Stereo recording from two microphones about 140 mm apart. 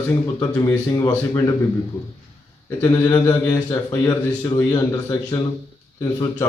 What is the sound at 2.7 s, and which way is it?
Speech, 25° left (ahead or behind).